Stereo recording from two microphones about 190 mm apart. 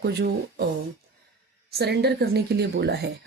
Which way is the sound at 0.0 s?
60° right (ahead or behind).